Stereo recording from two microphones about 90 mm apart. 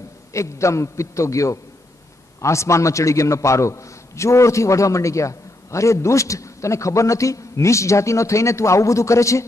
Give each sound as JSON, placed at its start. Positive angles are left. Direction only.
{"t": 0.3, "sound": "a man's voice", "side_deg": 35}